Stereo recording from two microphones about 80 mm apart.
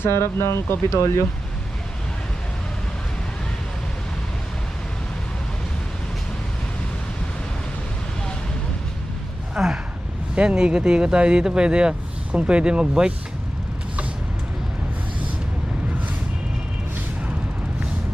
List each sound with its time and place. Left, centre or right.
0.0 s speech: left
9.6 s a sound: centre
10.3 s speech: centre